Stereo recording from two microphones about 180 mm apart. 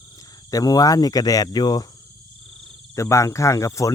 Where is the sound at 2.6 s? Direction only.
15° left (ahead or behind).